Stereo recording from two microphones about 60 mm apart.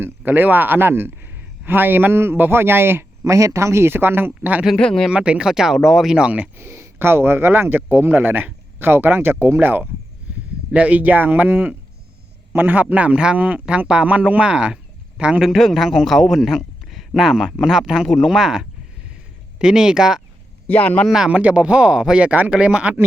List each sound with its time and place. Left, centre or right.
0.3 s a man's voice: right
3.2 s speech: right
4.8 s speech: centre
5.1 s speech: centre
6.6 s a man's voice: right
10.7 s a man's voice: right
15.4 s a man's voice: centre
20.7 s speech: left
21.2 s a man's voice: right